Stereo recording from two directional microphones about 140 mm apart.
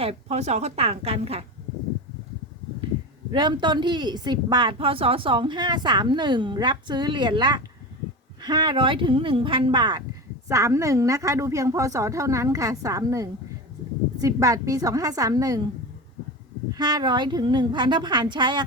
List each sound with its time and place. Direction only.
0.0 s a woman's voice: 50° right (ahead or behind)
3.3 s a woman's voice: 35° right (ahead or behind)
10.5 s a woman's voice: 20° right (ahead or behind)
16.7 s a woman's voice: 30° right (ahead or behind)